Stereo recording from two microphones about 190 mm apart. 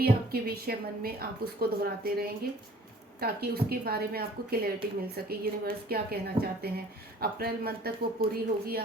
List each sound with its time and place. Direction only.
0.0 s a woman's voice: 55° right (ahead or behind)